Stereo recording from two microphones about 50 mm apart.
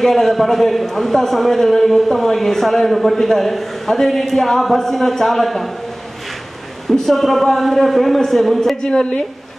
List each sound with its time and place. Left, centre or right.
0.0 s a man's voice: centre
6.9 s a man's voice: centre
8.8 s a woman's voice: centre